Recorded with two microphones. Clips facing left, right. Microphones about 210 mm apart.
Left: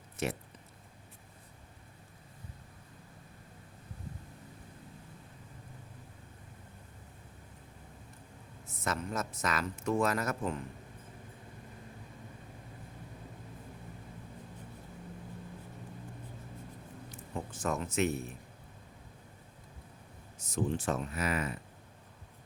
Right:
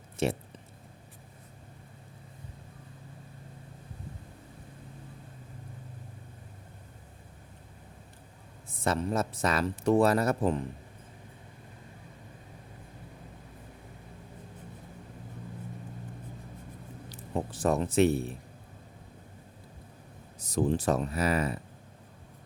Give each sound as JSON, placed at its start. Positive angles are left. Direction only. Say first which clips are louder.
{"t": 0.2, "sound": "speech", "louder": "right 6 dB", "side_deg": -30}
{"t": 8.6, "sound": "speech", "louder": "right 7 dB", "side_deg": -30}
{"t": 17.1, "sound": "speech", "louder": "right 8 dB", "side_deg": -35}
{"t": 20.4, "sound": "speech", "louder": "right 6 dB", "side_deg": -35}